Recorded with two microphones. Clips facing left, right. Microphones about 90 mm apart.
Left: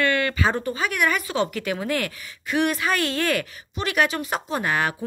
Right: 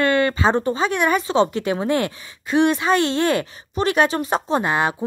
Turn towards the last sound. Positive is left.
turn(degrees=-20)  # may be behind; listen again after turning